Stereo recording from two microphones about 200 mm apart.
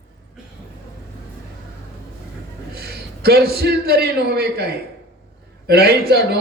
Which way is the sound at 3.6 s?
55° right (ahead or behind).